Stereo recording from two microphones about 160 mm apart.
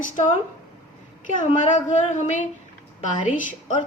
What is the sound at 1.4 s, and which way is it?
A woman's voice, 50° left (ahead or behind).